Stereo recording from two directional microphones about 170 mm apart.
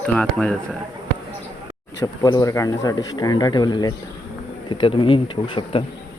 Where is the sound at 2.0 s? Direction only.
20° left (ahead or behind).